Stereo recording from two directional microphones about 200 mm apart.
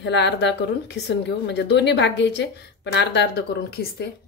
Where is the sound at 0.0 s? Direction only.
60° left (ahead or behind).